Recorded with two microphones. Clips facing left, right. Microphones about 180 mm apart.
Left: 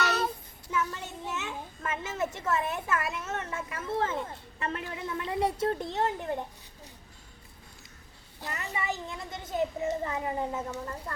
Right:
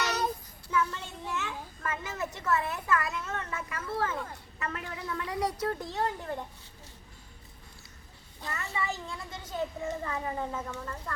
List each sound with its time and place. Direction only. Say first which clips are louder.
0.0 s child singing: left 2 dB; 15° right (ahead or behind)
0.7 s a child's voice: right 1 dB; 20° left (ahead or behind)
8.4 s a child's voice: left 1 dB; 15° left (ahead or behind)